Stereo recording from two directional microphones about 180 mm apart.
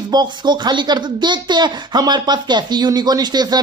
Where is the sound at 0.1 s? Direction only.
25° right (ahead or behind).